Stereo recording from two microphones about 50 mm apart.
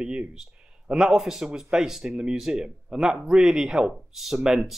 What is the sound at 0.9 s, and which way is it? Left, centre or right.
Speech, centre.